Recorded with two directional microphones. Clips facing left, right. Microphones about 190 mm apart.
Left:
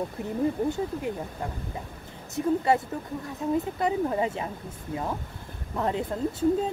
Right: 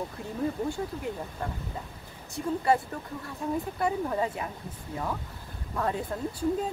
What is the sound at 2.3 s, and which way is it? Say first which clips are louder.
Speech: left 3 dB; 20° left (ahead or behind).